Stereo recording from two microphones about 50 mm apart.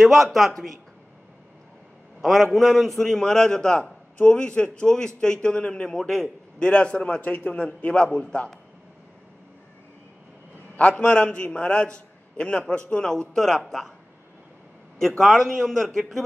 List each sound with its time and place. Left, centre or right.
0.0 s speech: centre
2.2 s a man's voice: centre
6.7 s a man's voice: left
10.8 s a man's voice: centre
15.0 s speech: centre